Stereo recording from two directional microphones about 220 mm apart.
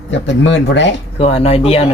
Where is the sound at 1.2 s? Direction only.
25° left (ahead or behind).